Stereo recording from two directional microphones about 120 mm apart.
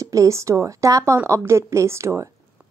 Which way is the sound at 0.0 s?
25° right (ahead or behind).